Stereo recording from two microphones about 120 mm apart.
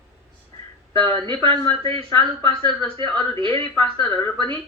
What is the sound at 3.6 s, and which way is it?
Speech, 15° left (ahead or behind).